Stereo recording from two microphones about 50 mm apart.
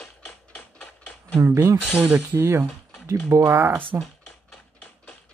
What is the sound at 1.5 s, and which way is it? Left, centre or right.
Speech, right.